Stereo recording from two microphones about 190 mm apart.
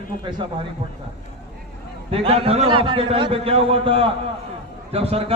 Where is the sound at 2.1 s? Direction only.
30° right (ahead or behind).